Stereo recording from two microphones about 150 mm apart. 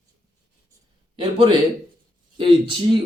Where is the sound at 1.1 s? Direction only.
35° right (ahead or behind).